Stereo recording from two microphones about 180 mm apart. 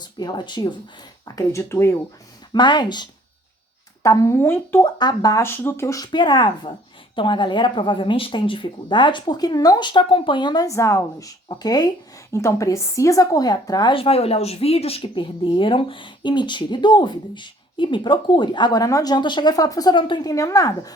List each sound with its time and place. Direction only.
0.0 s speech: 25° left (ahead or behind)
2.5 s speech: 25° left (ahead or behind)